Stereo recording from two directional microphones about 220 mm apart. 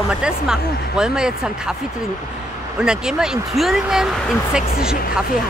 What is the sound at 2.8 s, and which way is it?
Speech, 5° right (ahead or behind).